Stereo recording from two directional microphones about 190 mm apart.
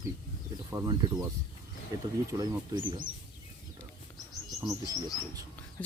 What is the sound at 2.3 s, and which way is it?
Speech, 20° right (ahead or behind).